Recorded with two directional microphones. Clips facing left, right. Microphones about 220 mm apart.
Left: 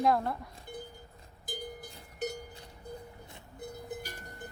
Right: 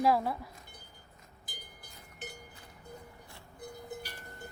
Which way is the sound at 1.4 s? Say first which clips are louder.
Left 14 dB; 45° left (ahead or behind).